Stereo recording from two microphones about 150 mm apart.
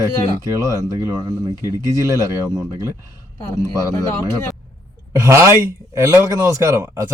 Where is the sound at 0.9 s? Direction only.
15° right (ahead or behind).